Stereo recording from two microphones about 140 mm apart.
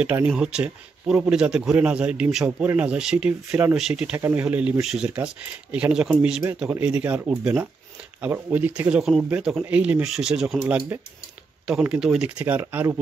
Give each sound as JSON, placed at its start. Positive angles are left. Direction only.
{"t": 0.0, "sound": "a man's voice", "side_deg": -10}
{"t": 10.6, "sound": "a man's voice", "side_deg": -15}